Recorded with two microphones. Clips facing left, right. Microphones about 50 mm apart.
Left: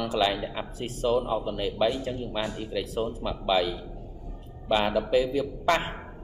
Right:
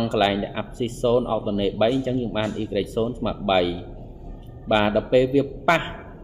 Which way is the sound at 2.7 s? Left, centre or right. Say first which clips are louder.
Right 6 dB; right.